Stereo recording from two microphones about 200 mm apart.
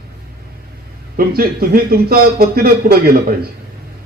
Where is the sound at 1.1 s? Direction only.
50° right (ahead or behind).